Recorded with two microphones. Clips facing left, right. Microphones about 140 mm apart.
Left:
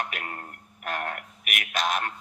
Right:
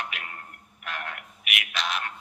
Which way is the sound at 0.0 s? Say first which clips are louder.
Left 4 dB; 45° left (ahead or behind).